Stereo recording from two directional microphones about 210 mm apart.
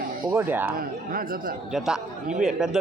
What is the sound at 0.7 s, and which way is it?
Speech, 45° right (ahead or behind).